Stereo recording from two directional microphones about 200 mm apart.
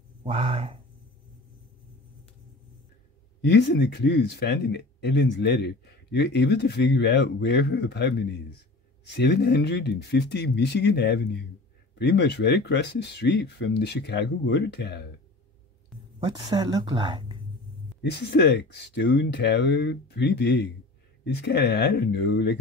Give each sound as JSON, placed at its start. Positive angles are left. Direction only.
{"t": 0.2, "sound": "speech", "side_deg": -30}
{"t": 3.3, "sound": "speech", "side_deg": 60}
{"t": 16.2, "sound": "speech", "side_deg": -20}
{"t": 18.0, "sound": "speech", "side_deg": 55}